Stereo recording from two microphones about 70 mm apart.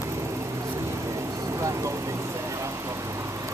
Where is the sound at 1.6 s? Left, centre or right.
Right.